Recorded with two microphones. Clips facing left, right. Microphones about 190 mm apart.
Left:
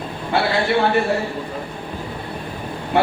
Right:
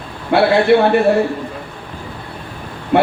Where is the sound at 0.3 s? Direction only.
60° right (ahead or behind).